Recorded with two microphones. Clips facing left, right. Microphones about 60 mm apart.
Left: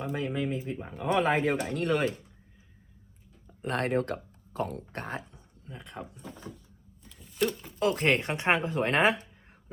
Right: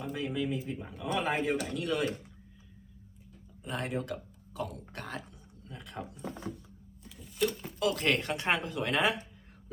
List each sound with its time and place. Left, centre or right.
0.0 s speech: left
3.6 s speech: left
7.0 s a sound: centre
7.8 s speech: left